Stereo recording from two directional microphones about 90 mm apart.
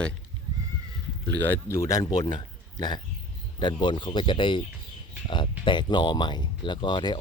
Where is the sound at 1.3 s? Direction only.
20° left (ahead or behind).